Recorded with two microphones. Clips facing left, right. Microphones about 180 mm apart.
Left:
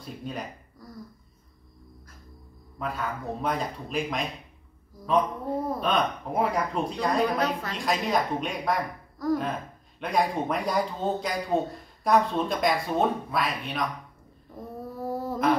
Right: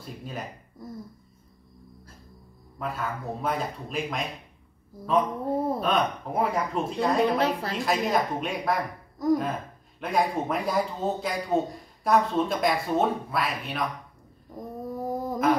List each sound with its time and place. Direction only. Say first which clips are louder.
0.0 s a man's voice: left 1 dB; centre (ahead or behind)
0.7 s a woman's voice: right 7 dB; 25° right (ahead or behind)
2.8 s a man's voice: even; 5° right (ahead or behind)
7.2 s a woman's voice: right 2 dB; 30° right (ahead or behind)
7.7 s a man's voice: right 1 dB; 5° right (ahead or behind)
14.5 s a sound: right 3 dB; 15° right (ahead or behind)